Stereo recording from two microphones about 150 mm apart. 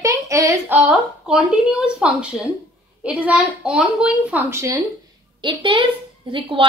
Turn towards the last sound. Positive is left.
turn(degrees=-35)  # may be behind; listen again after turning